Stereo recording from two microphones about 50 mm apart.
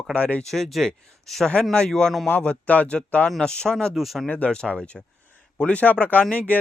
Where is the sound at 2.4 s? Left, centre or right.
Left.